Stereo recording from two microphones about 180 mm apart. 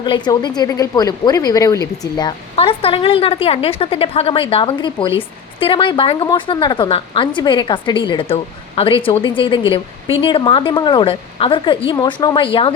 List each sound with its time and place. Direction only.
0.0 s a woman's voice: 25° left (ahead or behind)